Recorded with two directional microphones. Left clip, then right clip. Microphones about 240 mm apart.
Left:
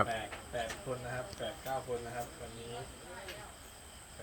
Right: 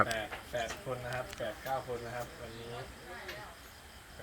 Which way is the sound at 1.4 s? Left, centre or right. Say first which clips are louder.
Right 1 dB; centre.